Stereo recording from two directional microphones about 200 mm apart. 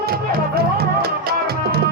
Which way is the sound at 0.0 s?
50° right (ahead or behind).